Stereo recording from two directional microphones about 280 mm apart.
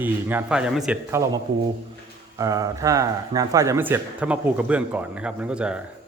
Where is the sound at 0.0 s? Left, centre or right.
Centre.